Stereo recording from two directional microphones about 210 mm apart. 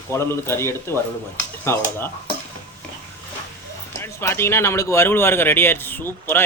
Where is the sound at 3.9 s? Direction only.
10° left (ahead or behind).